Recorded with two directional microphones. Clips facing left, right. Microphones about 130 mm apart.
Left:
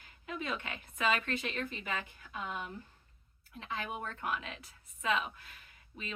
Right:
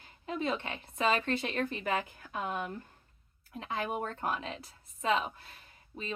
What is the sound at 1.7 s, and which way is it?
Speech, 45° right (ahead or behind).